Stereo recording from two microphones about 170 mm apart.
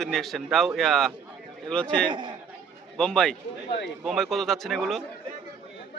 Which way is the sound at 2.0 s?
25° right (ahead or behind).